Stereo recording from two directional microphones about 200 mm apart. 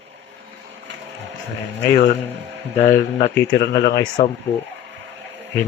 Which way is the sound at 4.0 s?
25° left (ahead or behind).